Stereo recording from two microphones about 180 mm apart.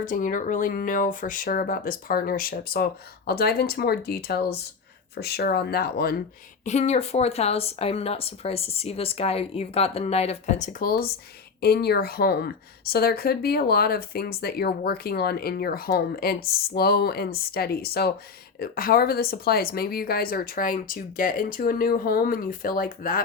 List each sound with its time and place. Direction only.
0.0 s speech: 45° left (ahead or behind)
6.7 s speech: 40° left (ahead or behind)